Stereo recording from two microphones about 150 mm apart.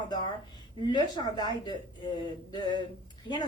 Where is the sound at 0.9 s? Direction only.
30° left (ahead or behind).